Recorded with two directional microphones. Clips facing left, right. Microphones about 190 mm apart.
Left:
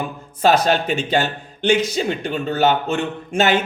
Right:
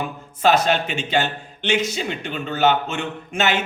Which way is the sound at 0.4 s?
40° left (ahead or behind).